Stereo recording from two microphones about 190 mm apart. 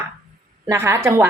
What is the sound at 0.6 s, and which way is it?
Speech, 15° right (ahead or behind).